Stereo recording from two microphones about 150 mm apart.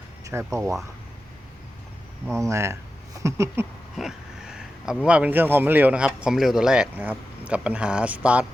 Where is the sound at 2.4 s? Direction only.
20° right (ahead or behind).